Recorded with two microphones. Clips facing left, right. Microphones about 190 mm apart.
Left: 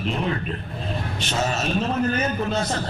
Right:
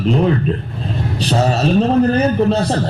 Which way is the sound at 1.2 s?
35° right (ahead or behind).